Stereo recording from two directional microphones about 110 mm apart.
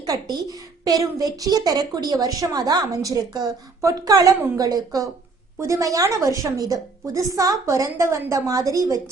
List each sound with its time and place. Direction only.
0.0 s a woman's voice: 35° right (ahead or behind)